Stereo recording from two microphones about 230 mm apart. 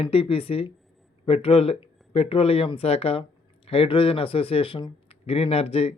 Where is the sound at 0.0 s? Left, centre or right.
Left.